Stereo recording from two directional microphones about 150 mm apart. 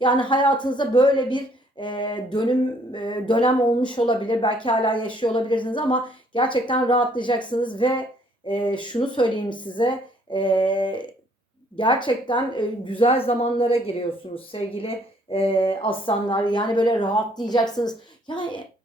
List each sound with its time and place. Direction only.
0.0 s a woman's voice: 30° left (ahead or behind)